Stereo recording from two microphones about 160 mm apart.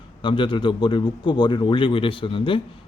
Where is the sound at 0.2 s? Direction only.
30° left (ahead or behind).